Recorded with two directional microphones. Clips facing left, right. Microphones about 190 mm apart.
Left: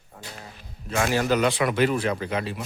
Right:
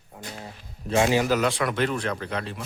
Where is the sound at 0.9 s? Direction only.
20° right (ahead or behind).